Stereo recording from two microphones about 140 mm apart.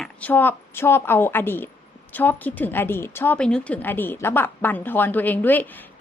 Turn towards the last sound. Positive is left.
turn(degrees=15)  # may be behind; listen again after turning